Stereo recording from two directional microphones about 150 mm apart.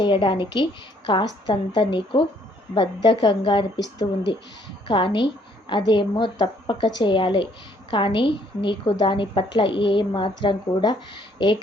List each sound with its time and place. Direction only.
0.0 s a woman's voice: 35° left (ahead or behind)